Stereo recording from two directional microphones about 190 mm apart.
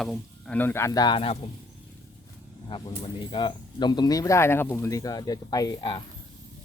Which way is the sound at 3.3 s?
25° left (ahead or behind).